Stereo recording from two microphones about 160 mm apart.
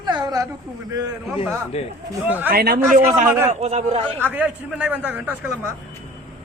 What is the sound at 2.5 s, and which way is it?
Speech, 70° right (ahead or behind).